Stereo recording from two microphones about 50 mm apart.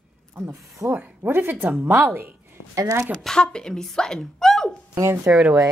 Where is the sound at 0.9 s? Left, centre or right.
Right.